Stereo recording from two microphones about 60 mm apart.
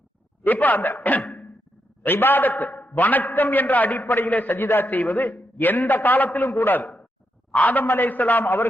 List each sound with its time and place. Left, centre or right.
0.4 s a man's voice: left